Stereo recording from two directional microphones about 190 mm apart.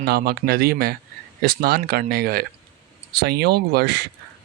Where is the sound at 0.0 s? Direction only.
55° right (ahead or behind).